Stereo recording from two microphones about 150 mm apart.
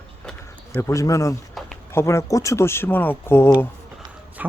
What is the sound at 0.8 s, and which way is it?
Speech, 20° left (ahead or behind).